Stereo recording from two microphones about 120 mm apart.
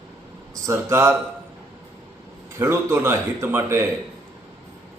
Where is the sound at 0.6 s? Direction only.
20° right (ahead or behind).